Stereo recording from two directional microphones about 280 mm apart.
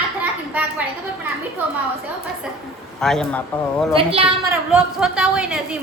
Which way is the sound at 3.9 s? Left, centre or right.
Centre.